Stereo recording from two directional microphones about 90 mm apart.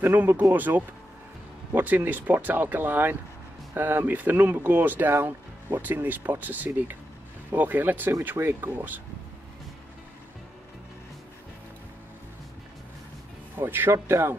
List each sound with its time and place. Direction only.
0.0 s speech: 25° right (ahead or behind)
13.6 s speech: 25° right (ahead or behind)